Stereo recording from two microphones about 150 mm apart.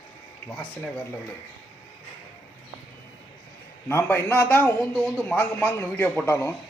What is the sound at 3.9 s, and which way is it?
A man's voice, 15° left (ahead or behind).